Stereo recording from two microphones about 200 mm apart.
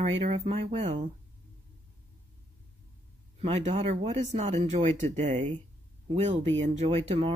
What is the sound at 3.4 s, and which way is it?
Speech, 35° right (ahead or behind).